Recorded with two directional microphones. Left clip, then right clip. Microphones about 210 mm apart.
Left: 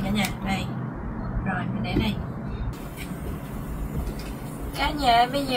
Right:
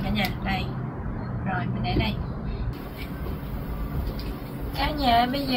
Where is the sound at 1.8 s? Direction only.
10° left (ahead or behind).